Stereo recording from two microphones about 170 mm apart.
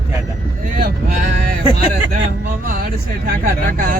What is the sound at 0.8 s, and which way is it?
Speech, 60° right (ahead or behind).